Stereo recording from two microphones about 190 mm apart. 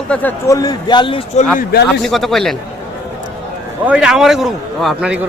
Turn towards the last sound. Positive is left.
turn(degrees=-5)  # may be behind; listen again after turning